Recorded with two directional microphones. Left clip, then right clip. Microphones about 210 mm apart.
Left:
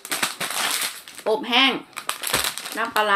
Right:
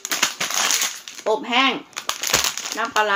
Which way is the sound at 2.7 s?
Centre (ahead or behind).